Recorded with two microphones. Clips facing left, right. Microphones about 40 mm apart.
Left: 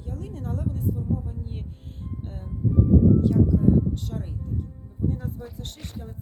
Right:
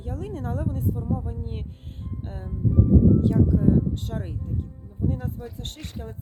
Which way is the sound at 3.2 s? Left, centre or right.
Centre.